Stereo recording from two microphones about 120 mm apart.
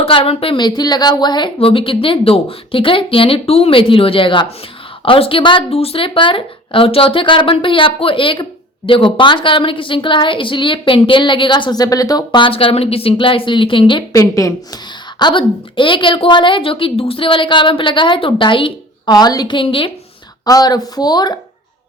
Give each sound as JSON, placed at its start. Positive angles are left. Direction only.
{"t": 0.0, "sound": "a woman's voice", "side_deg": 50}
{"t": 1.5, "sound": "a woman's voice", "side_deg": 50}
{"t": 14.1, "sound": "a woman's voice", "side_deg": 25}
{"t": 15.2, "sound": "a woman's voice", "side_deg": 40}
{"t": 20.4, "sound": "a woman's voice", "side_deg": 30}